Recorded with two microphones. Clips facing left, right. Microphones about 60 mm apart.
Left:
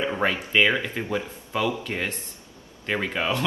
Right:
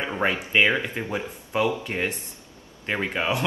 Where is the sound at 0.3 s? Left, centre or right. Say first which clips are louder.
Right 2 dB; right.